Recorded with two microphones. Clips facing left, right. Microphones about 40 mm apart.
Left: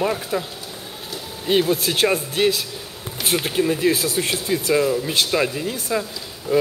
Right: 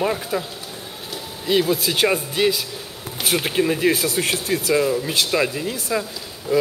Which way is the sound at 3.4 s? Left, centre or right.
Centre.